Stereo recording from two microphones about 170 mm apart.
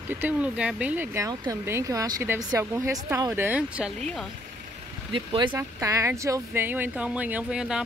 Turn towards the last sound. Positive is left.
turn(degrees=-5)  # may be behind; listen again after turning